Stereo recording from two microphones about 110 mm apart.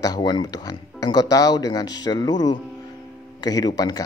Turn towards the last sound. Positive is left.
turn(degrees=40)  # may be behind; listen again after turning